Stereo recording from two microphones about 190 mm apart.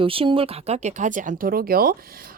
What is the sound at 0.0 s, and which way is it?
A woman's voice, 30° right (ahead or behind).